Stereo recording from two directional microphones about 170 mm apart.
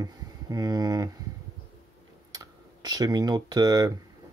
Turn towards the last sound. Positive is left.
turn(degrees=-20)  # may be behind; listen again after turning